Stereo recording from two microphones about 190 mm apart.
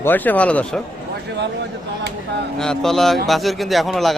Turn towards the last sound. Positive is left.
turn(degrees=0)  # may be behind; listen again after turning